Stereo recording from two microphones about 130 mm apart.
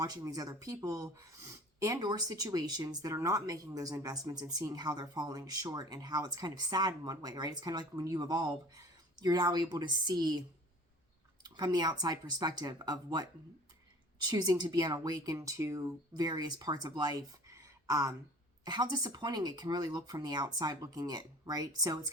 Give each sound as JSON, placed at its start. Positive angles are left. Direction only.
{"t": 0.0, "sound": "speech", "side_deg": -30}
{"t": 11.4, "sound": "speech", "side_deg": -30}
{"t": 14.3, "sound": "speech", "side_deg": -30}